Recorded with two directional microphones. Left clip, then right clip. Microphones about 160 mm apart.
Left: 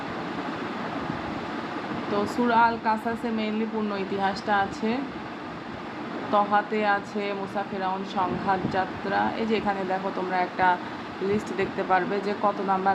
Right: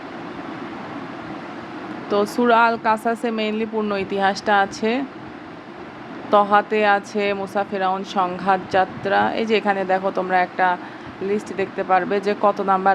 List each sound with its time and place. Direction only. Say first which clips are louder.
2.1 s a woman's voice: right 6 dB; 40° right (ahead or behind)
6.3 s a woman's voice: right 7 dB; 35° right (ahead or behind)